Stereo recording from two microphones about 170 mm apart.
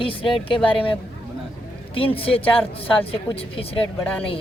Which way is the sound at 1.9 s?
35° left (ahead or behind).